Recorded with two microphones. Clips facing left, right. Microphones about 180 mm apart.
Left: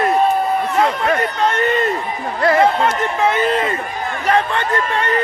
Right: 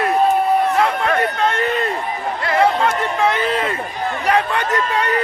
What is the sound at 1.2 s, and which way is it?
Speech, centre (ahead or behind).